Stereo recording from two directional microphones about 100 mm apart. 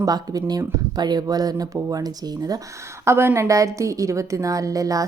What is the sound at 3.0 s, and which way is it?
A woman's voice, 25° right (ahead or behind).